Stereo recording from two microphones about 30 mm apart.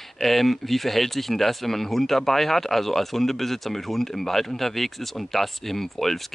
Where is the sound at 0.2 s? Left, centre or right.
Centre.